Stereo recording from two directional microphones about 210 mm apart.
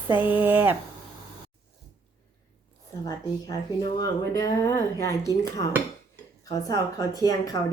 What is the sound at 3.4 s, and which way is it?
Speech, 20° left (ahead or behind).